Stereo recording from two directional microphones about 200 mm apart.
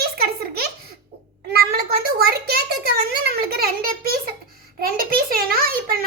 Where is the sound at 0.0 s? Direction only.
50° right (ahead or behind).